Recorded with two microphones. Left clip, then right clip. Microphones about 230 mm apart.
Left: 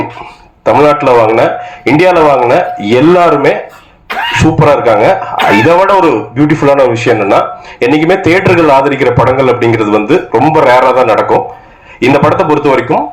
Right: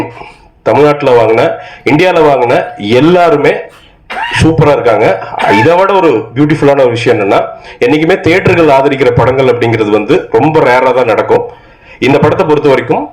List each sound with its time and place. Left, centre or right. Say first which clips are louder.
0.6 s a man's voice: left 1 dB; right